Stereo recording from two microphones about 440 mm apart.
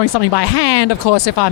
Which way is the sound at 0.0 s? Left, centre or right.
Left.